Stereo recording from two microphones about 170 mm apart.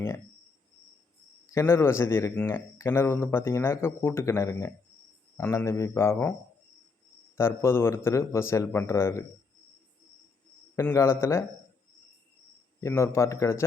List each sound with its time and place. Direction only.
1.5 s speech: 15° left (ahead or behind)
7.3 s speech: 15° left (ahead or behind)
10.8 s speech: 15° left (ahead or behind)
12.8 s speech: 15° left (ahead or behind)